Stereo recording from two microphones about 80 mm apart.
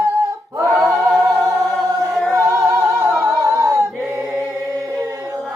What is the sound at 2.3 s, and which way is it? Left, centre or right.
Singing, right.